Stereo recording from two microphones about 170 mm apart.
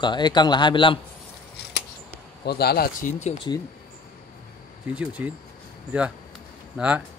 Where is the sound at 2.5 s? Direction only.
70° left (ahead or behind).